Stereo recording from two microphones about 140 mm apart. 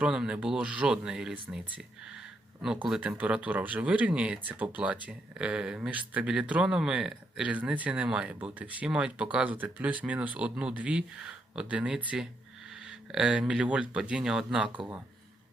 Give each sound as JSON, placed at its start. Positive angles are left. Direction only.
{"t": 0.0, "sound": "speech", "side_deg": -5}